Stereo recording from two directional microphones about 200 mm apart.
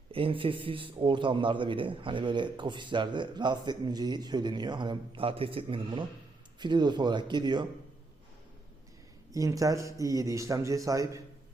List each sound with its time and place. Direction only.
0.1 s a man's voice: 25° right (ahead or behind)
9.3 s a man's voice: 15° right (ahead or behind)